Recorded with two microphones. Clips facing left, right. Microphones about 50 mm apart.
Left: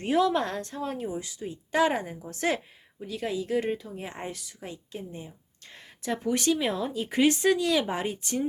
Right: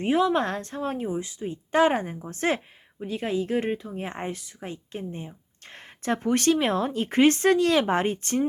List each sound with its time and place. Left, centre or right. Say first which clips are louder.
0.0 s speech: right 2 dB; right
0.4 s speech: right 3 dB; right